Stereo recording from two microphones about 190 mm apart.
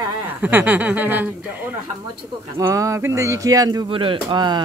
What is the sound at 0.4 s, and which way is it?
Speech, 10° right (ahead or behind).